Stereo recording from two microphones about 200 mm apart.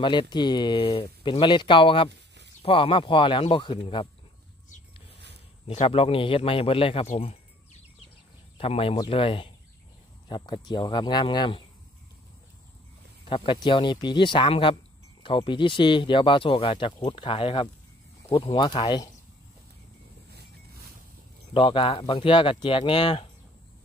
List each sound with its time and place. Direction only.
0.0 s speech: 25° left (ahead or behind)
2.0 s a sound: 60° right (ahead or behind)
2.6 s speech: 25° left (ahead or behind)
5.7 s speech: 30° left (ahead or behind)
13.2 s speech: 25° left (ahead or behind)
21.5 s speech: 25° left (ahead or behind)